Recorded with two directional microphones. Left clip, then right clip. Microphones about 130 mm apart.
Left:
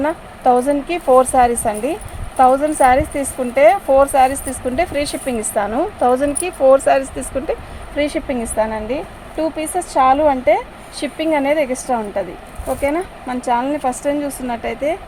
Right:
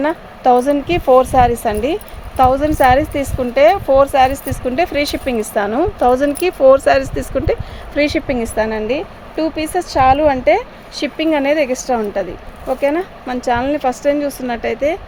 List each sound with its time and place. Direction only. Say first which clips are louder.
0.0 s a woman's voice: right 1 dB; 80° right
12.6 s speech: right 3 dB; 65° right (ahead or behind); by 14.9 s 85° right